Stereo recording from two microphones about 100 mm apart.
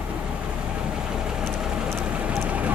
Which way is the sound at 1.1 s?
5° right (ahead or behind).